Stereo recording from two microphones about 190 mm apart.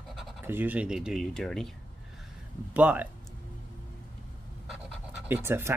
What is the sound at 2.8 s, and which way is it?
Speech, 10° right (ahead or behind).